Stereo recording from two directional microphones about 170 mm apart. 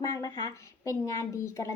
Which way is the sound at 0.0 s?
20° left (ahead or behind).